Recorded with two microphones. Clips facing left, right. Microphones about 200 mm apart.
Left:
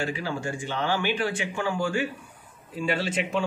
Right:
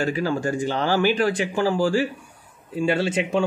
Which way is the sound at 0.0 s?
40° right (ahead or behind).